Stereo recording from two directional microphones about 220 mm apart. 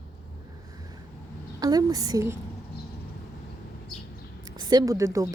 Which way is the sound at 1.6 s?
15° right (ahead or behind).